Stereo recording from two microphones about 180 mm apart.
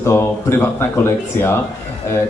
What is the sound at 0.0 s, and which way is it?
A man's voice, 15° left (ahead or behind).